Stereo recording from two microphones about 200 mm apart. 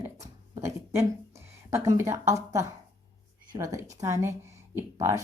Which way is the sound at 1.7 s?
15° right (ahead or behind).